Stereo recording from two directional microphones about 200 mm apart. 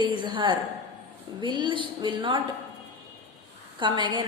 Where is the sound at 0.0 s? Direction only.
25° right (ahead or behind).